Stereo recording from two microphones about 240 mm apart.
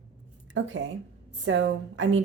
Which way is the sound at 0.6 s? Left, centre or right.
Right.